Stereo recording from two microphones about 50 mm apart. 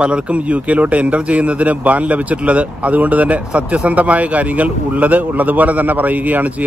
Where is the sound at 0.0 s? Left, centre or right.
Right.